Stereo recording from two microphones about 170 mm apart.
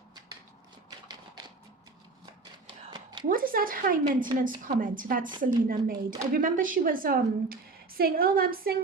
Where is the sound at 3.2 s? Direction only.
55° right (ahead or behind).